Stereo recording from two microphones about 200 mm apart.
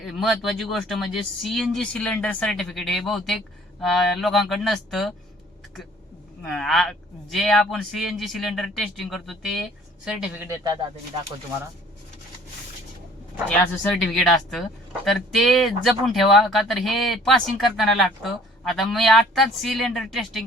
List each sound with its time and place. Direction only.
0.0 s speech: centre (ahead or behind)
6.4 s speech: centre (ahead or behind)
10.6 s speech: 20° right (ahead or behind)
13.5 s speech: 5° left (ahead or behind)